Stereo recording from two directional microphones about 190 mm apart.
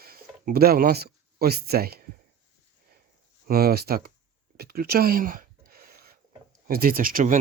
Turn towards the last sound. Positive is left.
turn(degrees=-45)  # may be behind; listen again after turning